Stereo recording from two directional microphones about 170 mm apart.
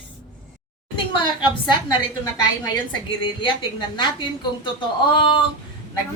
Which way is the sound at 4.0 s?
25° left (ahead or behind).